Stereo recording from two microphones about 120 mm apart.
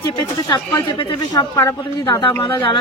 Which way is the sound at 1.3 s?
25° left (ahead or behind).